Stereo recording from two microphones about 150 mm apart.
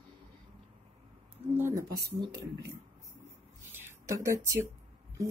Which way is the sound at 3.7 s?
20° right (ahead or behind).